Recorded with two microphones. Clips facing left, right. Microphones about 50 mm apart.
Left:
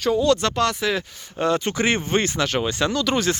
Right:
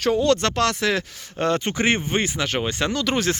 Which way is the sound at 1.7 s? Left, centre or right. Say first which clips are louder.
Even; right.